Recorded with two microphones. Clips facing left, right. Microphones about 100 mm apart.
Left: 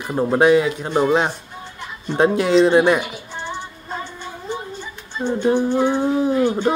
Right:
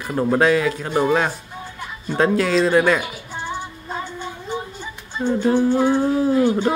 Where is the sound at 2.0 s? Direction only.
20° left (ahead or behind).